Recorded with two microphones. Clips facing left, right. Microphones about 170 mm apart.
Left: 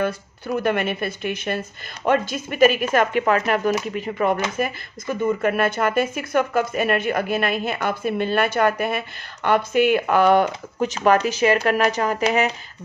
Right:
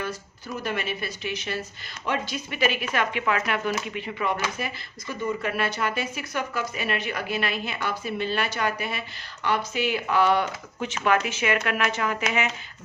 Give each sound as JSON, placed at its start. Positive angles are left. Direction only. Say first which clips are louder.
{"t": 0.0, "sound": "speech", "louder": "left 8 dB", "side_deg": 55}